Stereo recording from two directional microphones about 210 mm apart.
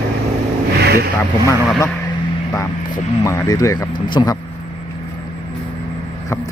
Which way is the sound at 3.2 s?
15° left (ahead or behind).